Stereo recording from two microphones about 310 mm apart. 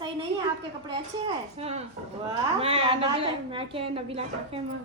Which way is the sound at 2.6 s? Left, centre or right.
Centre.